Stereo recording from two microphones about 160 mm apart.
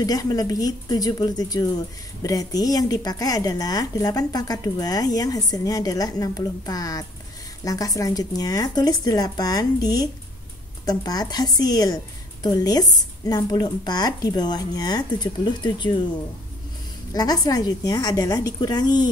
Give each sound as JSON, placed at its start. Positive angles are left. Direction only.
{"t": 0.0, "sound": "a woman's voice", "side_deg": 25}
{"t": 17.1, "sound": "a woman's voice", "side_deg": 25}